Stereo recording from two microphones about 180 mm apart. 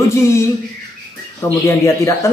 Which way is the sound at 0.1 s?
15° left (ahead or behind).